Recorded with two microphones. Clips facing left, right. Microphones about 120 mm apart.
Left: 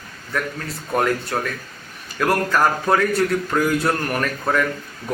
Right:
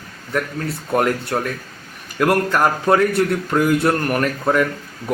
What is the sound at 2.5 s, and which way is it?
A man's voice, 20° right (ahead or behind).